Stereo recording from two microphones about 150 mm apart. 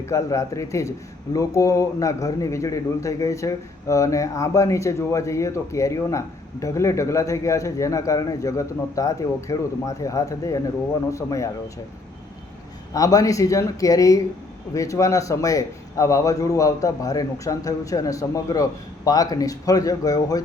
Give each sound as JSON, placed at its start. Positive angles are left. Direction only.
{"t": 0.0, "sound": "speech", "side_deg": 20}
{"t": 12.9, "sound": "speech", "side_deg": 25}